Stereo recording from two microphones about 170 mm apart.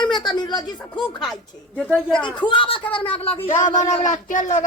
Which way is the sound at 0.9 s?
5° left (ahead or behind).